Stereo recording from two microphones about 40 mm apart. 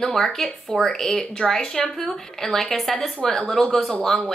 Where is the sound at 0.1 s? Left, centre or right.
Centre.